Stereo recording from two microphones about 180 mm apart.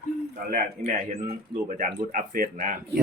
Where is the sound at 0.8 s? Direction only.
35° right (ahead or behind).